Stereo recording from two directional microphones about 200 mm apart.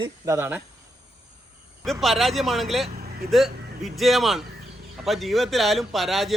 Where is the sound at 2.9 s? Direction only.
50° right (ahead or behind).